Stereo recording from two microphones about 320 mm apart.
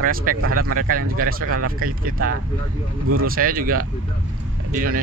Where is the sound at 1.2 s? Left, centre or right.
Right.